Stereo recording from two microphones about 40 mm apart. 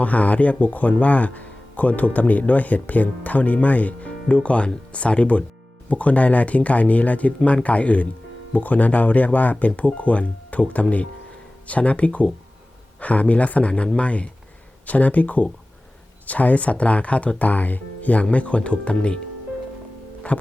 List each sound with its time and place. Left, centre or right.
0.0 s speech: left
20.2 s music: left